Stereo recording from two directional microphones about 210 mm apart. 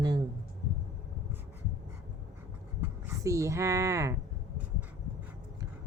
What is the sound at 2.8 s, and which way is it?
Speech, 10° right (ahead or behind).